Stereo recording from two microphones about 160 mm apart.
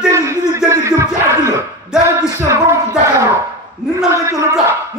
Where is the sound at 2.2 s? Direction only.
20° right (ahead or behind).